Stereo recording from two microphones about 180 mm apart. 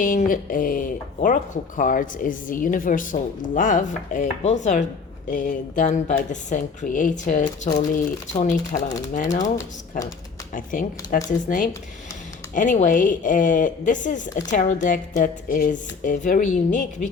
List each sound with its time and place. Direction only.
0.0 s speech: 50° left (ahead or behind)
10.5 s speech: 50° left (ahead or behind)